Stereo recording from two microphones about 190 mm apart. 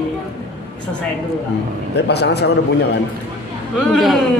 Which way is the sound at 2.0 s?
60° left (ahead or behind).